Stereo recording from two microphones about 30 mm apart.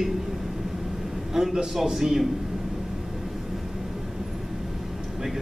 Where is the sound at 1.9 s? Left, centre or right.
Centre.